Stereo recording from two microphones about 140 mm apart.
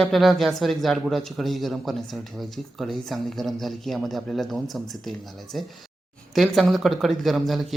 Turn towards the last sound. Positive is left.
turn(degrees=0)  # may be behind; listen again after turning